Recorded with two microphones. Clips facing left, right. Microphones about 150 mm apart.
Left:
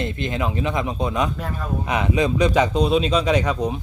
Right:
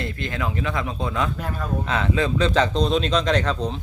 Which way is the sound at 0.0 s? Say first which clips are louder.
Left 3 dB; 20° left (ahead or behind).